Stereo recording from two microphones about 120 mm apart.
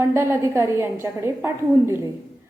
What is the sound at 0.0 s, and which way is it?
A woman's voice, 20° right (ahead or behind).